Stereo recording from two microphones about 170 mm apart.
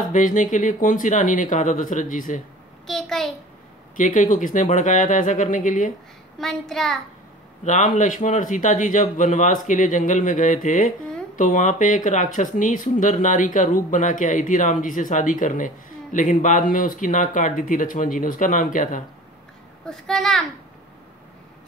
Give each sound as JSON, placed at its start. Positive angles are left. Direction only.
{"t": 0.1, "sound": "speech", "side_deg": 50}
{"t": 2.9, "sound": "a sound", "side_deg": 0}
{"t": 3.9, "sound": "speech", "side_deg": 50}
{"t": 6.4, "sound": "a child's voice", "side_deg": 0}
{"t": 7.6, "sound": "speech", "side_deg": 45}
{"t": 19.9, "sound": "a child's voice", "side_deg": 0}